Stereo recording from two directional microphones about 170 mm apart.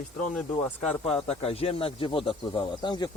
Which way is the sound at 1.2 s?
35° left (ahead or behind).